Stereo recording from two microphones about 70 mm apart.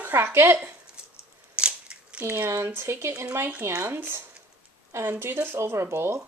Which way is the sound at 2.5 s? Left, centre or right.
Right.